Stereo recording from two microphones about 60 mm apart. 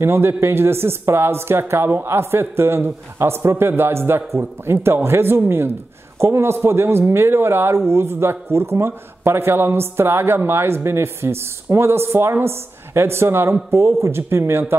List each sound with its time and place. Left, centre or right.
0.0 s speech: right